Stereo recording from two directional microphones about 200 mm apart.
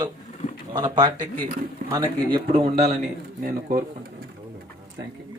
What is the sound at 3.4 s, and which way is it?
Speech, 45° right (ahead or behind).